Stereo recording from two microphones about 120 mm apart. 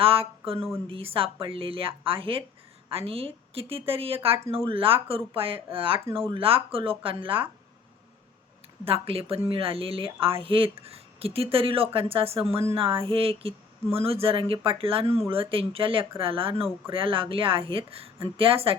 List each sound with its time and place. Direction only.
0.0 s a woman's voice: 50° right (ahead or behind)
8.8 s a woman's voice: 50° right (ahead or behind)